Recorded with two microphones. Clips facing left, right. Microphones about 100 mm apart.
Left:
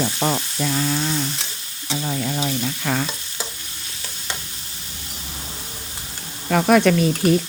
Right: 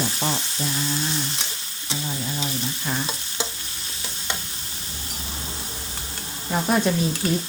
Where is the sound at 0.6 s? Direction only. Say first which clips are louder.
Left 6 dB; 70° left (ahead or behind).